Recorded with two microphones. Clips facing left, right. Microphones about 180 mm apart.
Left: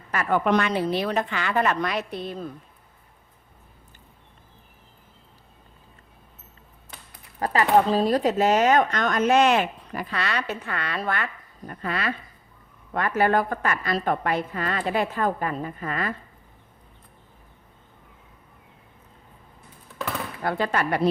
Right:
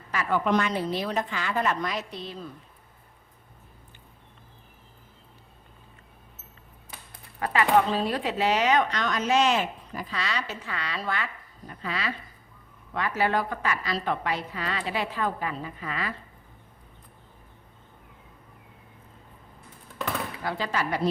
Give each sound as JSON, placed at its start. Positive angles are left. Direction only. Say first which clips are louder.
{"t": 0.1, "sound": "speech", "louder": "left 3 dB", "side_deg": 55}
{"t": 7.3, "sound": "a woman's voice", "louder": "left 2 dB", "side_deg": 40}
{"t": 20.4, "sound": "speech", "louder": "left 6 dB", "side_deg": 55}